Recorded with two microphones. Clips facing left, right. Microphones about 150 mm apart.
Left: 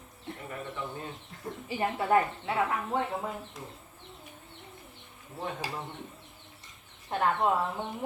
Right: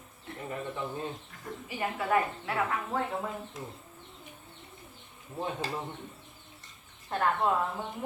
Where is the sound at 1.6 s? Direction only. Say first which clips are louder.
Left 3 dB; 30° left (ahead or behind).